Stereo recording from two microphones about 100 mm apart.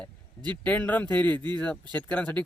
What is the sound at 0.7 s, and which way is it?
Speech, 15° left (ahead or behind).